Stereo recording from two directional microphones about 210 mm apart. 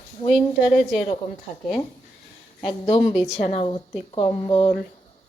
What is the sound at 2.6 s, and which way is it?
Speech, 25° left (ahead or behind).